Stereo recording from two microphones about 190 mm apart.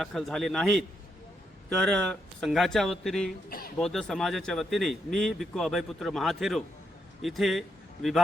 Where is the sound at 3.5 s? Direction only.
50° left (ahead or behind).